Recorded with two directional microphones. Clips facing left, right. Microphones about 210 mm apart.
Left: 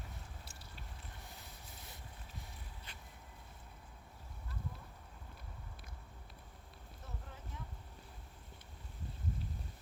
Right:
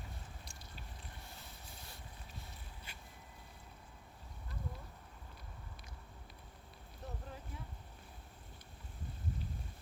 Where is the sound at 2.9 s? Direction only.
10° right (ahead or behind).